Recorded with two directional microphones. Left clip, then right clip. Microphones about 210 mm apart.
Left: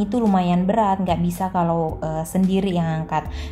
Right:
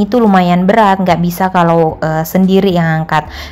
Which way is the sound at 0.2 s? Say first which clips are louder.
Right 10 dB; 20° right (ahead or behind).